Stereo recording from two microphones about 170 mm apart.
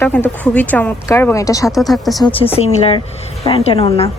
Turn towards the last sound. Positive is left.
turn(degrees=35)  # may be behind; listen again after turning